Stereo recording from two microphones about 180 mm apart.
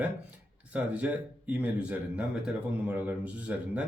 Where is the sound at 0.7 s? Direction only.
5° right (ahead or behind).